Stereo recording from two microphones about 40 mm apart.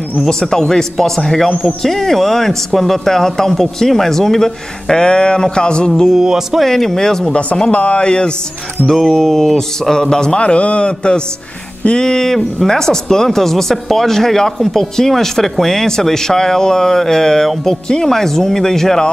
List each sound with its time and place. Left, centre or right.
0.2 s speech: centre
6.0 s speech: centre
6.6 s speech: centre
7.7 s speech: left
8.8 s speech: centre